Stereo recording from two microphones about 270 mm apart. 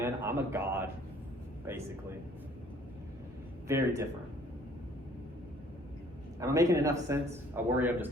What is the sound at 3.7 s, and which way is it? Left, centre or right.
Speech, centre.